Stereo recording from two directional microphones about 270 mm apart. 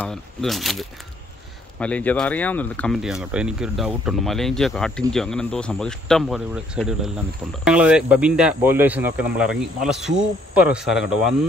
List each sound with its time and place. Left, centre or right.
0.0 s speech: centre